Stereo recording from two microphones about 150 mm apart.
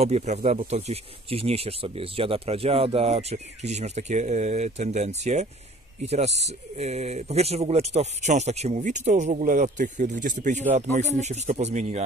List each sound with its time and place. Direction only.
0.0 s speech: 50° right (ahead or behind)